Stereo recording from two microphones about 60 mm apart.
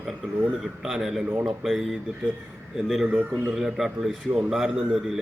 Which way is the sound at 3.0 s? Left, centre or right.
Centre.